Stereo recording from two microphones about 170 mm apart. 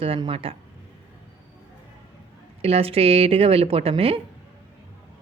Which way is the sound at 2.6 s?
35° right (ahead or behind).